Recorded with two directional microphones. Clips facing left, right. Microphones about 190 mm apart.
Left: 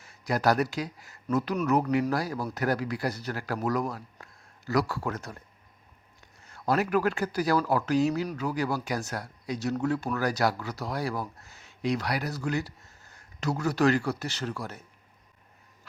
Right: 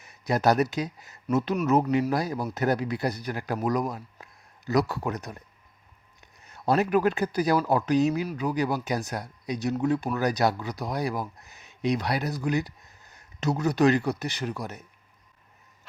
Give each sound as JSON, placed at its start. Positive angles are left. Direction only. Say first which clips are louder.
{"t": 0.0, "sound": "speech", "louder": "right 2 dB", "side_deg": -20}
{"t": 6.4, "sound": "speech", "louder": "right 3 dB", "side_deg": -20}